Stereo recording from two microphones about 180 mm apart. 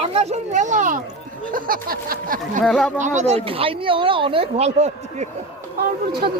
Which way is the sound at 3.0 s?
40° right (ahead or behind).